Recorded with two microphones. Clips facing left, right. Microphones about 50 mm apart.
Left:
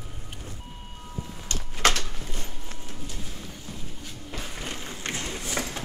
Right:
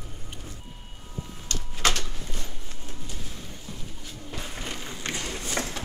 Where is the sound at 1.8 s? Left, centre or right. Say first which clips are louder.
Left 3 dB; left.